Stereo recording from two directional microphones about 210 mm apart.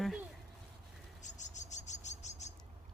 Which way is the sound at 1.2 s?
35° left (ahead or behind).